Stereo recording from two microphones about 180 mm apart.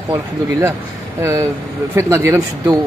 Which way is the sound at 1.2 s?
15° right (ahead or behind).